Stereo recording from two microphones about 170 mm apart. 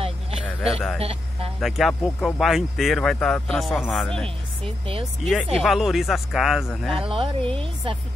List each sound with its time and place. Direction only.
0.6 s speech: centre (ahead or behind)
0.9 s speech: 35° right (ahead or behind)
1.6 s speech: centre (ahead or behind)
4.6 s speech: 35° right (ahead or behind)
5.2 s speech: centre (ahead or behind)
7.0 s speech: 30° right (ahead or behind)